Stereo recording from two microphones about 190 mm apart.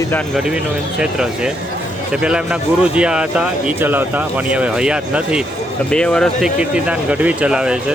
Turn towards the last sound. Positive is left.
turn(degrees=-5)  # may be behind; listen again after turning